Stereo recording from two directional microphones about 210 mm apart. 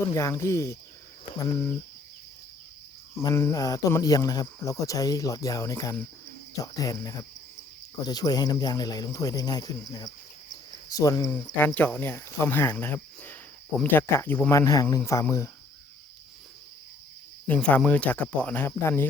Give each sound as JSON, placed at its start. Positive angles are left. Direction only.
{"t": 0.0, "sound": "speech", "side_deg": 15}
{"t": 3.2, "sound": "speech", "side_deg": 10}
{"t": 17.4, "sound": "speech", "side_deg": 5}